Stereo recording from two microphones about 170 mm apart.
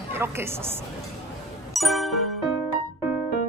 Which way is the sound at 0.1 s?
15° right (ahead or behind).